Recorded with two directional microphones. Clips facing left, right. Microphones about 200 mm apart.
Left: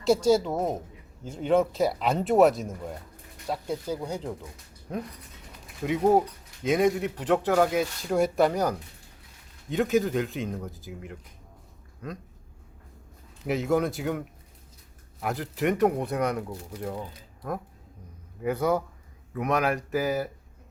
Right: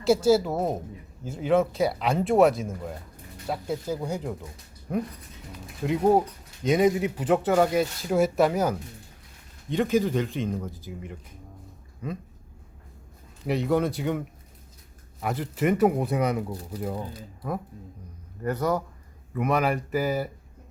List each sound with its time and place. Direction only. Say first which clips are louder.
0.0 s speech: right 1 dB; 5° right (ahead or behind)
5.8 s speech: right 1 dB; 5° left (ahead or behind)
13.4 s speech: right 1 dB; centre (ahead or behind)
18.3 s a man's voice: left 1 dB; 5° left (ahead or behind)